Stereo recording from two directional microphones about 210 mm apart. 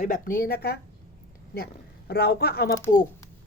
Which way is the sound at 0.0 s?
40° left (ahead or behind).